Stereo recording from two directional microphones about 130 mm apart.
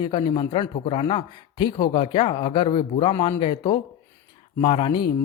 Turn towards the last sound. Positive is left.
turn(degrees=40)  # may be behind; listen again after turning